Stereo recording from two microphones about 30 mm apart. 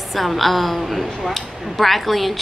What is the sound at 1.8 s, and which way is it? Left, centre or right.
Speech, centre.